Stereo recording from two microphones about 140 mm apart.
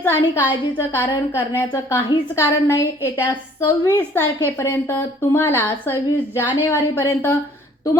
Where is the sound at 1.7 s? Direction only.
25° left (ahead or behind).